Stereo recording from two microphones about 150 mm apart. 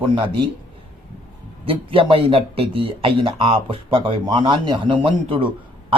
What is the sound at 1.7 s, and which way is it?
A man's voice, 35° right (ahead or behind).